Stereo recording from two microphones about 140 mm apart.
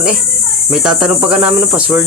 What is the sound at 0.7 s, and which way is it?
Cricket, 5° right (ahead or behind).